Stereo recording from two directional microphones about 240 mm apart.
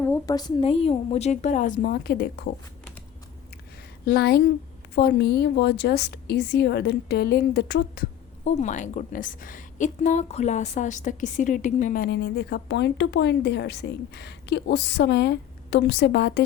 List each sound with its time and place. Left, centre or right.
0.0 s a woman's voice: centre; by 2.5 s left
4.0 s a woman's voice: left
8.5 s a woman's voice: left